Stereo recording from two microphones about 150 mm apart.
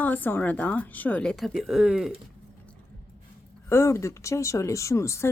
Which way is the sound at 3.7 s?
20° left (ahead or behind).